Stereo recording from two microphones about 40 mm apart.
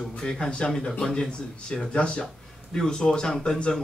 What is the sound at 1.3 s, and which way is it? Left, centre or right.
A man's voice, left.